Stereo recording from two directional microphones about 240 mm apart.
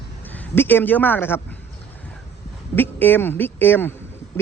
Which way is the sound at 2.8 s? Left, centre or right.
Centre.